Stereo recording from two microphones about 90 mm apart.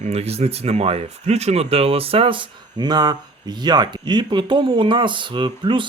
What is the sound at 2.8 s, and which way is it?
Speech, 50° right (ahead or behind).